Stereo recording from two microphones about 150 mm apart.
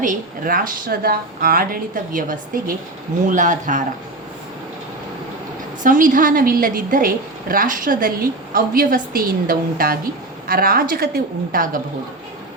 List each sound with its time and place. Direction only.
0.0 s a woman's voice: 65° right (ahead or behind)
5.8 s a woman's voice: 65° right (ahead or behind)